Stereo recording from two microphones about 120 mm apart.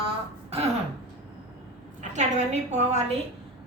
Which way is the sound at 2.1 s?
85° right.